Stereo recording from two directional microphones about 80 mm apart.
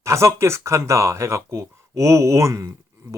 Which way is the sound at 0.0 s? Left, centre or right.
Right.